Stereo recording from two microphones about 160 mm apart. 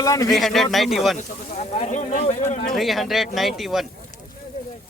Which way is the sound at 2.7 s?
Centre (ahead or behind).